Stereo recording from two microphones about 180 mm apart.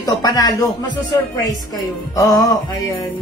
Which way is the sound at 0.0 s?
20° left (ahead or behind).